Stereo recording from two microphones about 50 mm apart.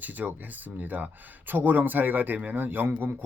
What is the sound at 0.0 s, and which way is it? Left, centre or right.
Speech, right.